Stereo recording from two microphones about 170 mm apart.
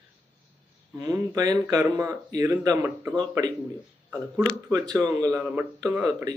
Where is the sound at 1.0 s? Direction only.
20° right (ahead or behind).